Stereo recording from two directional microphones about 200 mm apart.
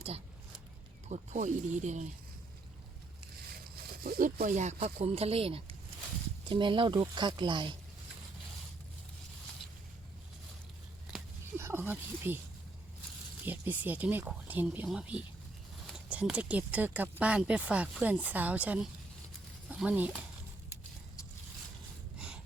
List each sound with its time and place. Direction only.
1.0 s speech: 35° right (ahead or behind)
3.5 s speech: 50° right (ahead or behind); by 7.8 s 25° right (ahead or behind)
11.1 s a sound: 10° right (ahead or behind)
13.4 s speech: 10° right (ahead or behind)